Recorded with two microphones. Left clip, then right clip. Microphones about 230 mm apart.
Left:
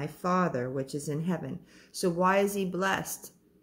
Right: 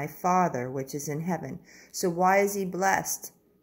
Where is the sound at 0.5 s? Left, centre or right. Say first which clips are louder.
Even; centre.